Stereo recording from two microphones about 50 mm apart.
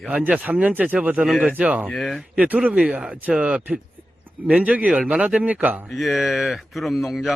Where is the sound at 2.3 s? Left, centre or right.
Right.